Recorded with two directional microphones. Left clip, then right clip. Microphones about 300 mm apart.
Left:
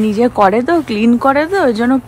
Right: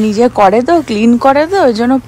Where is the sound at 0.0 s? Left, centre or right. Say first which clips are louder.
Right 3 dB; centre.